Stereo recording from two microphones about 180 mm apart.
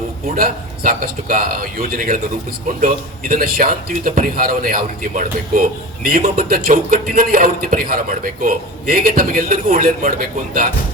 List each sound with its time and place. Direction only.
0.3 s a man's voice: 50° right (ahead or behind)